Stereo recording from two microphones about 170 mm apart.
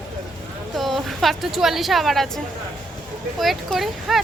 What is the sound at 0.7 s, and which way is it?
A woman's voice, centre (ahead or behind).